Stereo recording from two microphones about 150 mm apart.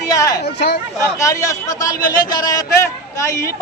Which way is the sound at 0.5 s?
90° left.